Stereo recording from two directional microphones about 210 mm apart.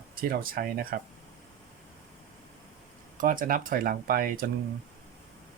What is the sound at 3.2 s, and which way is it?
Speech, 40° right (ahead or behind).